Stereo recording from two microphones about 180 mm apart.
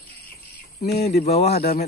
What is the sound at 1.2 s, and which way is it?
Speech, 35° left (ahead or behind).